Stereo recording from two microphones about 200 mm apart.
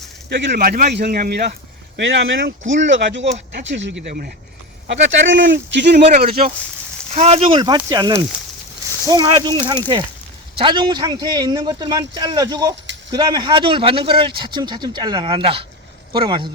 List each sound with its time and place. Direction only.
0.3 s speech: 55° right (ahead or behind)
2.0 s speech: 65° right (ahead or behind)
4.0 s speech: 45° right (ahead or behind)
4.9 s speech: 65° right (ahead or behind)
6.0 s speech: 35° right (ahead or behind)
7.1 s speech: 30° right (ahead or behind)